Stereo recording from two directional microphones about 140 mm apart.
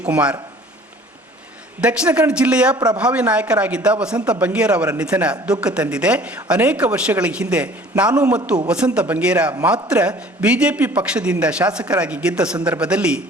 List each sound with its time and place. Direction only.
0.0 s speech: 10° right (ahead or behind)
1.8 s speech: 10° right (ahead or behind)
2.7 s speech: 30° right (ahead or behind)
3.0 s speech: 10° right (ahead or behind)